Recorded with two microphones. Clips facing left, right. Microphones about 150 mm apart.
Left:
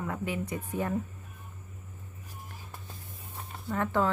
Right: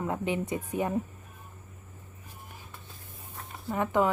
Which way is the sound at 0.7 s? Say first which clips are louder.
Right 1 dB; 15° right (ahead or behind).